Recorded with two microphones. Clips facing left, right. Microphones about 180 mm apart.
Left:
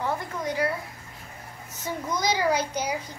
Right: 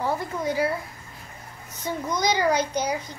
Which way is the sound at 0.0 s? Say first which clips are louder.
Right 3 dB; 5° right (ahead or behind).